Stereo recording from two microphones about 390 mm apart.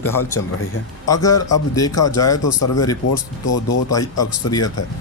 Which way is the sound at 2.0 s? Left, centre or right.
Left.